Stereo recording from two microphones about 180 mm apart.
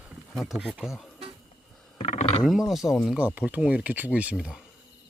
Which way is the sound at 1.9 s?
35° left (ahead or behind).